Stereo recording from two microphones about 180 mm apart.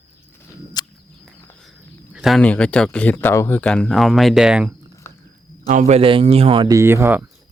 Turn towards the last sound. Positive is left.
turn(degrees=-15)  # may be behind; listen again after turning